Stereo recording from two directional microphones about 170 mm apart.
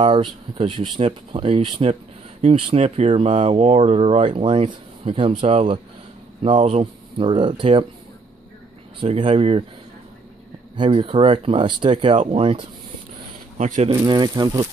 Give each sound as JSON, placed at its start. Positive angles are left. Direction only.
{"t": 0.0, "sound": "speech", "side_deg": -30}
{"t": 9.0, "sound": "speech", "side_deg": -35}
{"t": 10.8, "sound": "speech", "side_deg": -30}
{"t": 13.6, "sound": "speech", "side_deg": -45}
{"t": 13.9, "sound": "speech", "side_deg": -25}